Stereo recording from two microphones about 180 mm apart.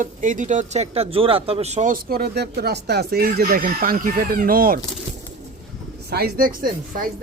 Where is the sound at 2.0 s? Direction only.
60° right (ahead or behind).